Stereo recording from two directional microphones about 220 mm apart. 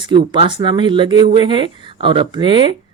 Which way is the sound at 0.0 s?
20° right (ahead or behind).